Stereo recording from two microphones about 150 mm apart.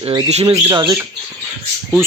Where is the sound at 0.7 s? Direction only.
30° right (ahead or behind).